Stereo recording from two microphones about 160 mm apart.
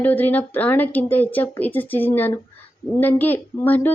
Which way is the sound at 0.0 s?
10° left (ahead or behind).